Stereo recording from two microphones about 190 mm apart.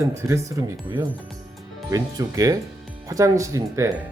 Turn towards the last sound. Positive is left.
turn(degrees=-15)  # may be behind; listen again after turning